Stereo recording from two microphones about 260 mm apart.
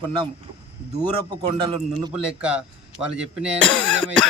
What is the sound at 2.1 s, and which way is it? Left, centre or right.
Speech, centre.